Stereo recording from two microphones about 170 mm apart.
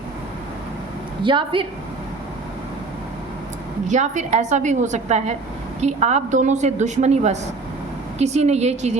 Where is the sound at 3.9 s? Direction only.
45° right (ahead or behind).